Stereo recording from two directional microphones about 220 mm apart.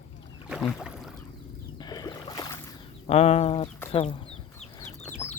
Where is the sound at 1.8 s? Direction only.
20° left (ahead or behind).